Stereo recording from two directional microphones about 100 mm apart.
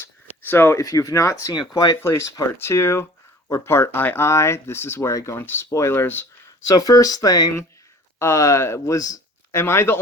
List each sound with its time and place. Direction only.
0.4 s speech: 20° left (ahead or behind)
0.8 s speech: 35° left (ahead or behind)
2.6 s speech: 25° left (ahead or behind)
6.7 s speech: 40° left (ahead or behind)
9.5 s speech: 25° left (ahead or behind)